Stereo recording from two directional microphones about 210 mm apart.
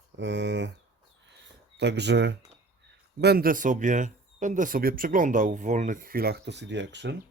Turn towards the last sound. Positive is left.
turn(degrees=-55)  # may be behind; listen again after turning